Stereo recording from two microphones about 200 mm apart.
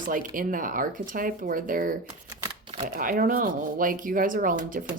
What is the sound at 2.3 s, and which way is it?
Shuffling cards, 20° right (ahead or behind).